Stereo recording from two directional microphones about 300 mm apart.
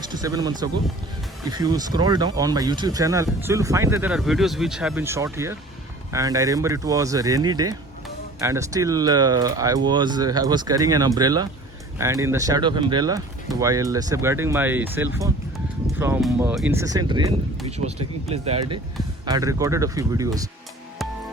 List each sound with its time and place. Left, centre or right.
0.1 s speech: centre